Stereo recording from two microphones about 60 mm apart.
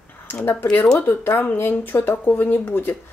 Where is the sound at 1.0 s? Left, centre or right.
Left.